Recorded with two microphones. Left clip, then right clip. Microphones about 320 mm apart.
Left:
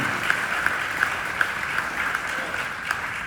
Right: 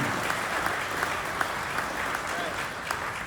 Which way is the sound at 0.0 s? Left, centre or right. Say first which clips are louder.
Left 5 dB; right.